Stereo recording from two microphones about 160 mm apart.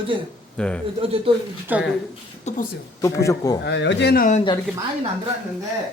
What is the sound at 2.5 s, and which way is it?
Speech, 45° left (ahead or behind).